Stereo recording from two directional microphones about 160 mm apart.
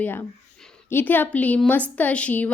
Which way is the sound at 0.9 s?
10° left (ahead or behind).